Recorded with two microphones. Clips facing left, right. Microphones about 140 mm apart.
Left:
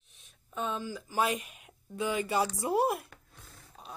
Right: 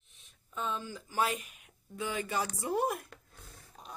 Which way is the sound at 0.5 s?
15° left (ahead or behind).